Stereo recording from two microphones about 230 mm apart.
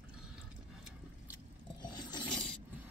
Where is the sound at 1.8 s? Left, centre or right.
Centre.